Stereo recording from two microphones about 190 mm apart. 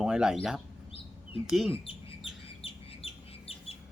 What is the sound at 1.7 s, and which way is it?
Speech, 30° left (ahead or behind).